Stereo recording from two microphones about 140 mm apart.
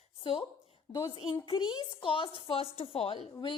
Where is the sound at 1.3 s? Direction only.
35° left (ahead or behind).